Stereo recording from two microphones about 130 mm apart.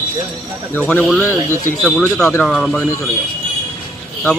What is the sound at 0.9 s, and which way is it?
Speech, 5° left (ahead or behind).